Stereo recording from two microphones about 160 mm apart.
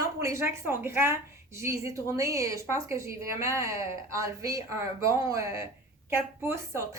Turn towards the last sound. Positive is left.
turn(degrees=-20)  # may be behind; listen again after turning